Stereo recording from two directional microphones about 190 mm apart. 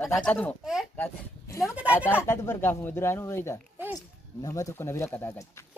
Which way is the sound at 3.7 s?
10° right (ahead or behind).